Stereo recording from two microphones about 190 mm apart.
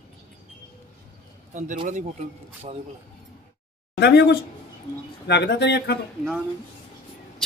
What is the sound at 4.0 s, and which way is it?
Speech, 60° left (ahead or behind).